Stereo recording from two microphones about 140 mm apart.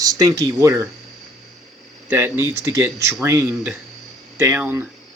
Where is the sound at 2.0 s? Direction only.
15° right (ahead or behind).